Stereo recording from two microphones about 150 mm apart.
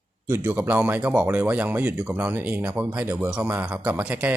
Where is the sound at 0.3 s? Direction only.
15° right (ahead or behind).